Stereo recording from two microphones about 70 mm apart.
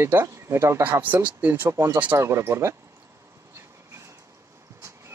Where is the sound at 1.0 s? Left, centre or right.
Right.